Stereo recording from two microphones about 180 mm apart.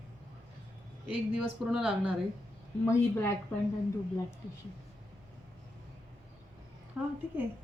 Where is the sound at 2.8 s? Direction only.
15° left (ahead or behind).